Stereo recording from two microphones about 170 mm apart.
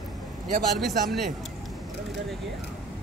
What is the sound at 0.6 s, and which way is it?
Speech, centre (ahead or behind).